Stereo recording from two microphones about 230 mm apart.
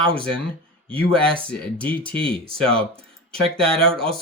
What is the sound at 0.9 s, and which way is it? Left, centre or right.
Speech, right.